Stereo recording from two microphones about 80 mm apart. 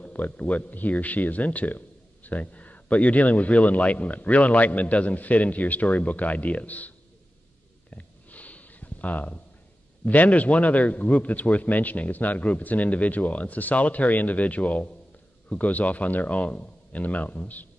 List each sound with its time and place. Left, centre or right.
0.0 s a man's voice: centre
7.9 s a sound: centre
10.0 s a man's voice: centre